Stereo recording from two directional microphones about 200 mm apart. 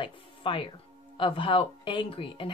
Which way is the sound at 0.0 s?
25° left (ahead or behind).